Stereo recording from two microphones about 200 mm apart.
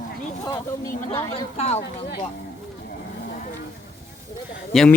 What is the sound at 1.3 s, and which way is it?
Speech, 30° left (ahead or behind).